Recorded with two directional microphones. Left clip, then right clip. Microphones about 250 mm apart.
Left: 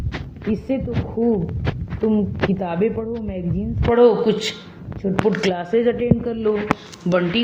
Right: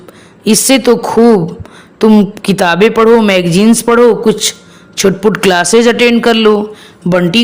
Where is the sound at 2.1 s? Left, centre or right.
Right.